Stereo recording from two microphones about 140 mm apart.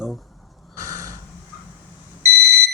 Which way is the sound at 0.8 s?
20° right (ahead or behind).